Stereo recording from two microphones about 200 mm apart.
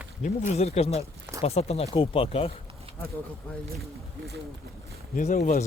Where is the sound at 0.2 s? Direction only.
35° left (ahead or behind).